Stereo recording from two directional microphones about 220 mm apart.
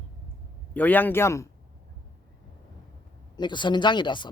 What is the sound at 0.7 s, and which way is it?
Speech, 5° left (ahead or behind).